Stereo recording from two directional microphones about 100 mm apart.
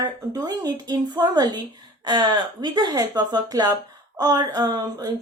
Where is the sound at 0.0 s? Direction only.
40° right (ahead or behind).